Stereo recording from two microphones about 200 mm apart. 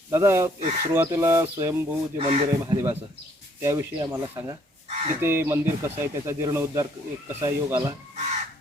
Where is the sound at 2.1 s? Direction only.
30° right (ahead or behind).